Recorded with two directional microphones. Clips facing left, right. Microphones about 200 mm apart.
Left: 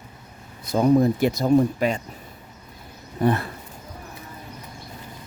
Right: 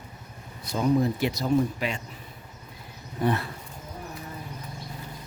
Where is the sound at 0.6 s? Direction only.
50° left (ahead or behind).